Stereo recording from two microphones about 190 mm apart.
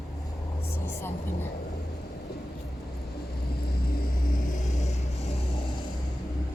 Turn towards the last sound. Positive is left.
turn(degrees=35)  # may be behind; listen again after turning